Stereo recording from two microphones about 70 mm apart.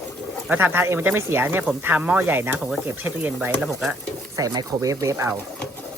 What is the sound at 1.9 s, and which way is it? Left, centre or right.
Speech, right.